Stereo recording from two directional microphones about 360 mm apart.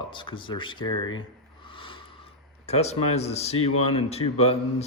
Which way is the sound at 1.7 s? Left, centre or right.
Centre.